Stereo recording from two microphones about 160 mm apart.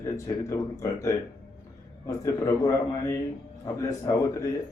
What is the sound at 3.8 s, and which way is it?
Speech, 20° left (ahead or behind).